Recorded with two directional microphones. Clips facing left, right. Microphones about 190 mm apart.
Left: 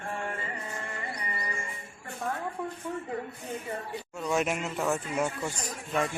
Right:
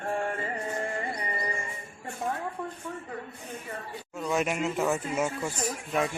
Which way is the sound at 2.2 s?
20° right (ahead or behind).